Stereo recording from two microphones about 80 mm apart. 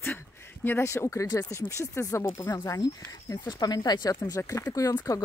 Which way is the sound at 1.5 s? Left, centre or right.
Left.